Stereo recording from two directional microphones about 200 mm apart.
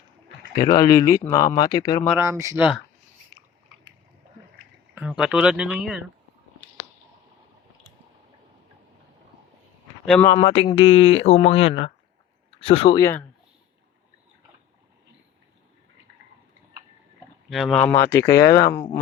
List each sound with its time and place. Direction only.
0.5 s speech: 20° left (ahead or behind)
2.0 s speech: 10° right (ahead or behind)
2.6 s speech: 5° right (ahead or behind)
4.9 s speech: 5° right (ahead or behind)
10.2 s speech: 20° left (ahead or behind)
13.0 s speech: 15° left (ahead or behind)
17.5 s speech: centre (ahead or behind)